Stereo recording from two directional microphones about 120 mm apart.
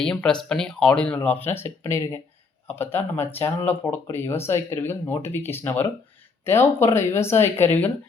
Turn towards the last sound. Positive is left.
turn(degrees=15)  # may be behind; listen again after turning